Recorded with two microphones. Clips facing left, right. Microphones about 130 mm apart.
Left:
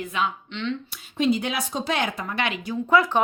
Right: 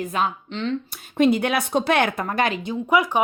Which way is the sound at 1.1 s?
55° right (ahead or behind).